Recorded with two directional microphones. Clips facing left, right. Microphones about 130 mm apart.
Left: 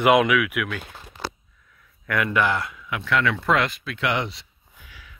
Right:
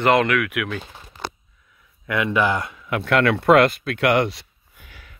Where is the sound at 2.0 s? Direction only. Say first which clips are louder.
Right 2 dB; 20° right (ahead or behind).